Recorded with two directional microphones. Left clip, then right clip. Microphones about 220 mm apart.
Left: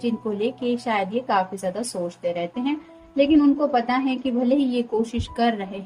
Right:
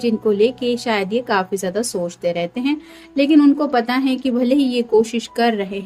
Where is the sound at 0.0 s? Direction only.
35° right (ahead or behind).